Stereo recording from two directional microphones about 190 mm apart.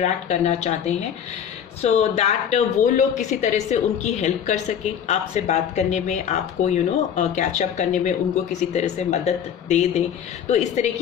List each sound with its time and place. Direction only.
0.0 s speech: 35° left (ahead or behind)